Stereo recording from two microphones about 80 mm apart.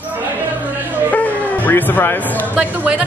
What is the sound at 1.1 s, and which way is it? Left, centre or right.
Music, centre.